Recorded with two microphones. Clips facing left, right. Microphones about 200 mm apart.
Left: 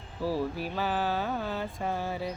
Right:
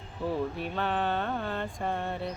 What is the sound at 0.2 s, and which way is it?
Mantra, 5° left (ahead or behind).